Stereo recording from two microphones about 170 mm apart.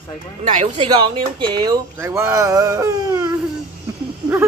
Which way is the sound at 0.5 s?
40° right (ahead or behind).